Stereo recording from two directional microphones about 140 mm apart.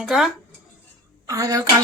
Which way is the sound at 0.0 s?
5° right (ahead or behind).